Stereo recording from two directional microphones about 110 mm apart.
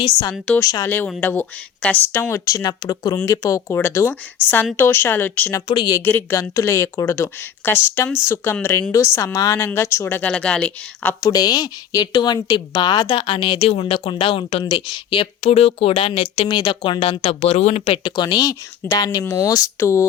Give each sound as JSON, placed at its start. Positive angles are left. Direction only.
{"t": 0.0, "sound": "a woman's voice", "side_deg": 35}
{"t": 0.9, "sound": "speech", "side_deg": 15}
{"t": 2.3, "sound": "a woman's voice", "side_deg": 30}
{"t": 5.6, "sound": "a woman's voice", "side_deg": 45}
{"t": 6.1, "sound": "speech", "side_deg": 15}
{"t": 10.3, "sound": "speech", "side_deg": 10}
{"t": 11.2, "sound": "a woman's voice", "side_deg": 35}
{"t": 13.1, "sound": "a woman's voice", "side_deg": 50}
{"t": 14.6, "sound": "a woman's voice", "side_deg": 40}
{"t": 15.4, "sound": "speech", "side_deg": 70}
{"t": 16.6, "sound": "speech", "side_deg": 40}
{"t": 18.0, "sound": "a woman's voice", "side_deg": 40}